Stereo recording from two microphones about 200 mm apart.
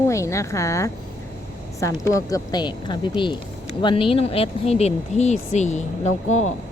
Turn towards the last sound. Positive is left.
turn(degrees=35)  # may be behind; listen again after turning